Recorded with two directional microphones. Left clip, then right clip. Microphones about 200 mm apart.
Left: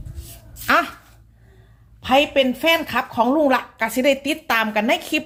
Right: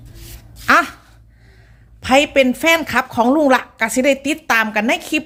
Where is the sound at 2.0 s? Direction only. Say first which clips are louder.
Right 3 dB; 35° right (ahead or behind); by 5.2 s 20° right (ahead or behind).